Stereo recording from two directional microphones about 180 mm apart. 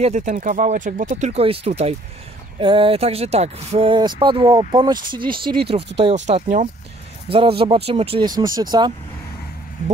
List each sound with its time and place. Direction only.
0.0 s speech: 40° right (ahead or behind); by 8.9 s 25° right (ahead or behind)